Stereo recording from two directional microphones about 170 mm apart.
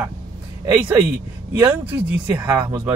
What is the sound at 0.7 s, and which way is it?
Speech, 10° right (ahead or behind).